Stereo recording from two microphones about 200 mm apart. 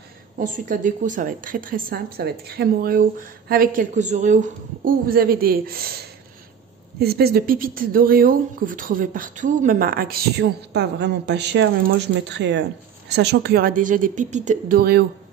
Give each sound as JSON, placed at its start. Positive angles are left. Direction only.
{"t": 0.4, "sound": "speech", "side_deg": -40}
{"t": 10.7, "sound": "a woman's voice", "side_deg": -60}